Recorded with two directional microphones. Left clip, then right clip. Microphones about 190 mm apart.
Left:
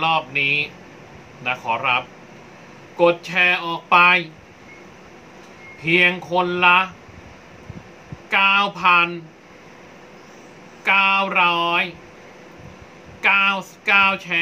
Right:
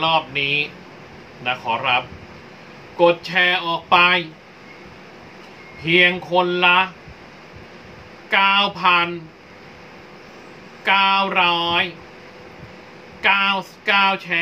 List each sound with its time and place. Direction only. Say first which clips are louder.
0.0 s speech: even; 20° left (ahead or behind)
5.9 s speech: right 1 dB; 20° left (ahead or behind)
8.3 s speech: even; 20° left (ahead or behind)
10.8 s speech: even; 20° left (ahead or behind)
13.2 s speech: even; 20° left (ahead or behind)